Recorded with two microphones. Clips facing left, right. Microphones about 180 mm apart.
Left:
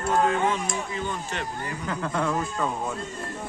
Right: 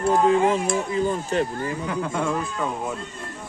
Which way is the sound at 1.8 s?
10° right (ahead or behind).